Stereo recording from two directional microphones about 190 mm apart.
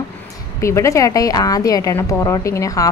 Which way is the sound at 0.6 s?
15° left (ahead or behind).